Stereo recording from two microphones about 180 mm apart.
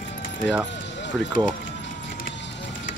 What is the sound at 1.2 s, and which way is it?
Speech, centre (ahead or behind).